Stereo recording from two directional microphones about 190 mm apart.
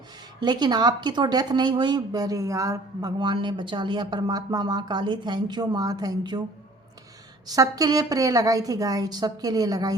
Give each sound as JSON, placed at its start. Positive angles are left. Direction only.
{"t": 0.3, "sound": "a woman's voice", "side_deg": -20}
{"t": 7.4, "sound": "a woman's voice", "side_deg": -20}